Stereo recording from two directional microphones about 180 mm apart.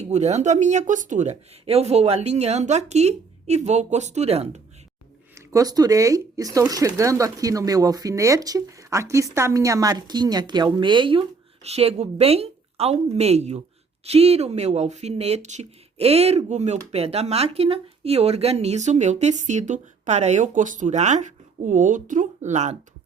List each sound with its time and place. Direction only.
0.0 s speech: 40° right (ahead or behind)
5.3 s speech: 20° right (ahead or behind); by 22.8 s 40° right (ahead or behind)